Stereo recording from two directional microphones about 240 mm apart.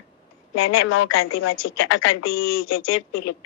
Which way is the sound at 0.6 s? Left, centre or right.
Left.